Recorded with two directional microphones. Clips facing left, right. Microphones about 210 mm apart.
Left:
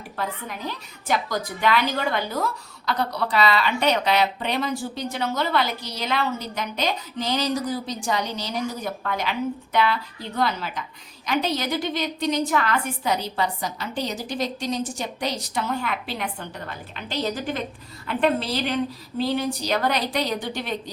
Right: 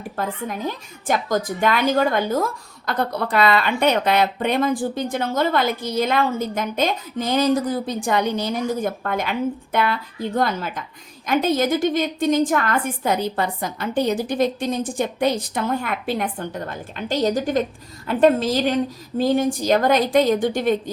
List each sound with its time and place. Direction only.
0.2 s a woman's voice: 45° right (ahead or behind)